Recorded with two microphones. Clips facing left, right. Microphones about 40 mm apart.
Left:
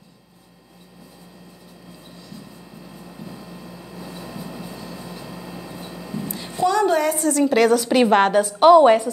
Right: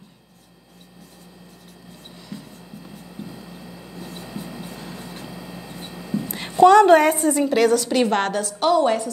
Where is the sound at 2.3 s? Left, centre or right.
Right.